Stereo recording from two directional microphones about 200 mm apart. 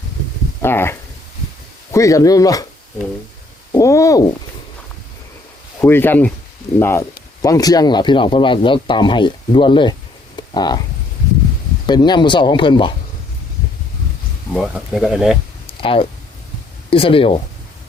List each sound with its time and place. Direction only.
0.6 s speech: 10° left (ahead or behind)
3.8 s speech: 15° left (ahead or behind)
5.8 s speech: 10° left (ahead or behind)
10.3 s a sound: 20° left (ahead or behind)
11.9 s speech: 20° left (ahead or behind)
14.5 s speech: centre (ahead or behind)
15.6 s a sound: 25° left (ahead or behind)
16.9 s speech: 25° left (ahead or behind)